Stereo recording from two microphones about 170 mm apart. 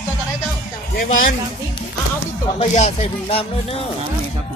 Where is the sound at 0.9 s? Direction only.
55° left (ahead or behind).